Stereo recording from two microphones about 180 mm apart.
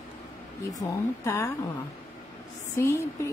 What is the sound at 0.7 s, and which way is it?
Speech, 20° left (ahead or behind).